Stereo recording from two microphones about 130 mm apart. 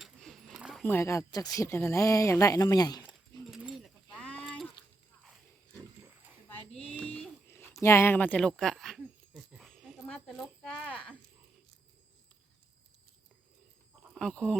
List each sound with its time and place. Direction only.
0.0 s a sound: centre (ahead or behind)
0.9 s speech: 20° left (ahead or behind)
3.4 s keys jangling: 5° right (ahead or behind)
4.2 s livestock: 10° left (ahead or behind)
5.7 s pig: 20° right (ahead or behind)
6.5 s a sound: 10° left (ahead or behind)
14.2 s speech: 5° left (ahead or behind)